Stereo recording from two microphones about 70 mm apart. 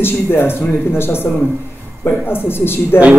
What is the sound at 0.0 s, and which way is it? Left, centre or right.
Speech, left.